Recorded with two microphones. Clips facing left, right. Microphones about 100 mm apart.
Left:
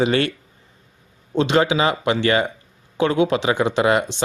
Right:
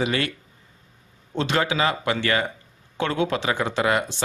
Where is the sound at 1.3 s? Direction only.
20° left (ahead or behind).